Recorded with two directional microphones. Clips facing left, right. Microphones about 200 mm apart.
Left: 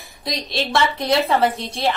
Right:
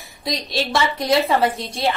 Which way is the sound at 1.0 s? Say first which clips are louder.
Right 1 dB; centre (ahead or behind).